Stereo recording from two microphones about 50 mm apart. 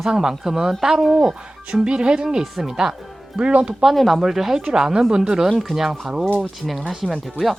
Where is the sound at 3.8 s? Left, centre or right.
Centre.